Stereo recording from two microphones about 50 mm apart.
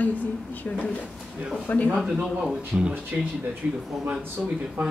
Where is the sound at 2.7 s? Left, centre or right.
Centre.